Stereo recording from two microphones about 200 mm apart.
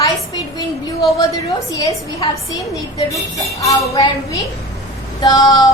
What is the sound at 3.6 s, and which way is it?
A woman's voice, 20° left (ahead or behind).